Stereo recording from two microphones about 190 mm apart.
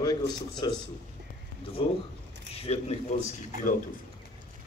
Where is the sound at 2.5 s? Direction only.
30° left (ahead or behind).